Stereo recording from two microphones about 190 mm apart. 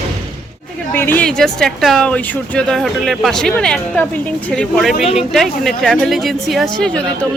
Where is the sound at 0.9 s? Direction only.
10° left (ahead or behind).